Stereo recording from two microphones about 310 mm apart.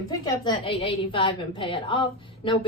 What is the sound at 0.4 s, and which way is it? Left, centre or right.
A woman's voice, centre.